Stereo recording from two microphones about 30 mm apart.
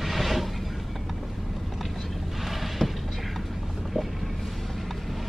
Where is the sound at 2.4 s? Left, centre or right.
Centre.